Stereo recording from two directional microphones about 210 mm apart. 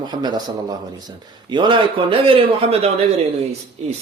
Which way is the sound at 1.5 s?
20° right (ahead or behind).